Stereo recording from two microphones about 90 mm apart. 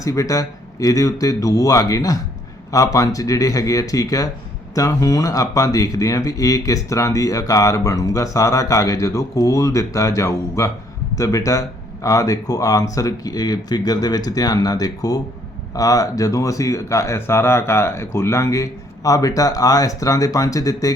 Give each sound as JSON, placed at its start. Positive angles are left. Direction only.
{"t": 0.0, "sound": "speech", "side_deg": 40}